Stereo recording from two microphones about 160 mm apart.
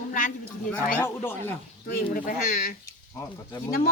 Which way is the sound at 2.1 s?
60° left (ahead or behind).